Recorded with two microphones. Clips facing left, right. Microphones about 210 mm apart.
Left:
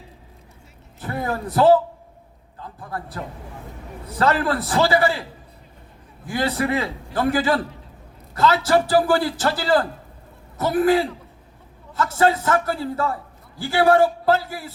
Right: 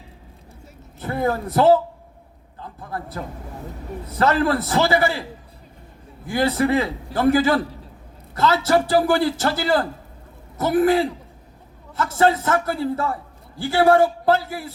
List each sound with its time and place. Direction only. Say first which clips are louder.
0.9 s a man's voice: right 4 dB; 25° right (ahead or behind)
4.1 s a man's voice: right 1 dB; 25° right (ahead or behind)
6.2 s a man's voice: right 3 dB; 25° right (ahead or behind)